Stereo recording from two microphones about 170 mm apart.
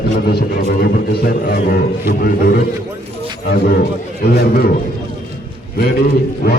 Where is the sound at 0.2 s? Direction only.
65° left (ahead or behind).